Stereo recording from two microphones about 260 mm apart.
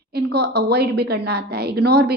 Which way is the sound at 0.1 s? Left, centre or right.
Right.